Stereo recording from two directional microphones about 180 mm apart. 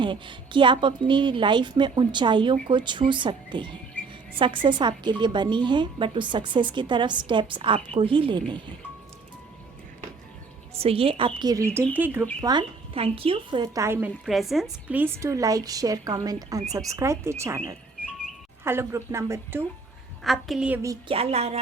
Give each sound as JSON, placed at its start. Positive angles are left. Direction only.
{"t": 0.0, "sound": "a woman's voice", "side_deg": -25}
{"t": 10.8, "sound": "a woman's voice", "side_deg": -30}
{"t": 12.4, "sound": "a woman's voice", "side_deg": -25}
{"t": 14.3, "sound": "a woman's voice", "side_deg": 0}
{"t": 20.2, "sound": "a woman's voice", "side_deg": 0}
{"t": 21.1, "sound": "speech", "side_deg": -35}